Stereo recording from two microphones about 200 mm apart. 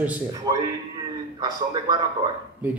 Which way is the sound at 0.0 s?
10° right (ahead or behind).